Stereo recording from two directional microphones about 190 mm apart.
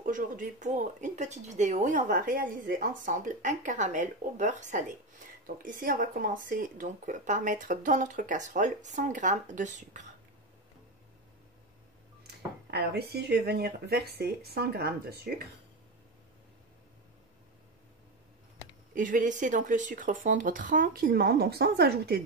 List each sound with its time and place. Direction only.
0.0 s speech: 45° right (ahead or behind)
12.7 s speech: 60° right (ahead or behind)
18.9 s speech: 45° right (ahead or behind)